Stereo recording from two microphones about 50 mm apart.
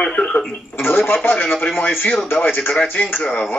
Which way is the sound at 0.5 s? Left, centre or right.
Left.